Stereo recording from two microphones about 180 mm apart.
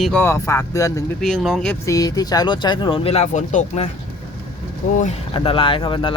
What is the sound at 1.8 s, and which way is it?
Speech, 20° left (ahead or behind).